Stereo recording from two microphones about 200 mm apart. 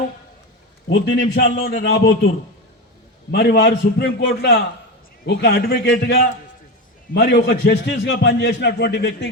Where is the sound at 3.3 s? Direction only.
55° left (ahead or behind).